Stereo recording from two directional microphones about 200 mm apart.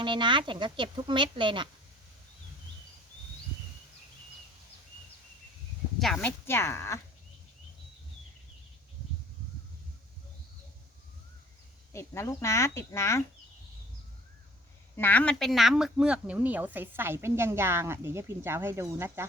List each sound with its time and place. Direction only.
0.0 s speech: 25° right (ahead or behind)
6.0 s speech: centre (ahead or behind)
6.4 s speech: 15° left (ahead or behind)
11.9 s speech: 15° left (ahead or behind)
14.9 s speech: 10° left (ahead or behind); by 19.3 s 10° right (ahead or behind)